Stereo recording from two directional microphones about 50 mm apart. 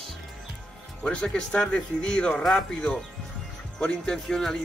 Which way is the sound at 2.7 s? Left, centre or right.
Centre.